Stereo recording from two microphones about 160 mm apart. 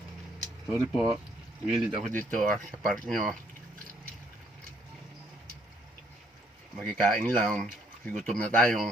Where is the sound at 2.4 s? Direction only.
5° left (ahead or behind).